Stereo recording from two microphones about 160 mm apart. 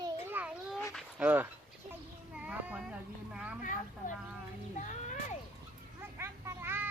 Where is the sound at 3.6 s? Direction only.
55° left (ahead or behind).